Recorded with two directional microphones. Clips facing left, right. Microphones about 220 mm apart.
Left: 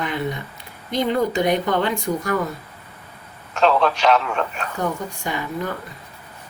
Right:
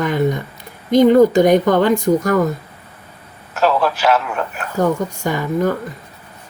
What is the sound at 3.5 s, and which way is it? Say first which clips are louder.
A man's voice: right 1 dB; 5° right (ahead or behind).